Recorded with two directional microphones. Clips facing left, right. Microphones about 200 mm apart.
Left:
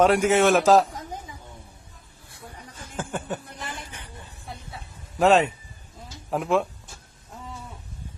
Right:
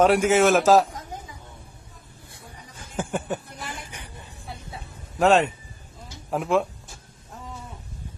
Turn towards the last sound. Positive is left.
turn(degrees=0)  # may be behind; listen again after turning